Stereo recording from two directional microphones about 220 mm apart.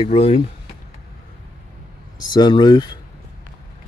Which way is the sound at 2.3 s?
20° left (ahead or behind).